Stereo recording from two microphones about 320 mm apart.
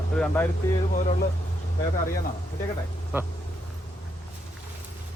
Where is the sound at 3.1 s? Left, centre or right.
Centre.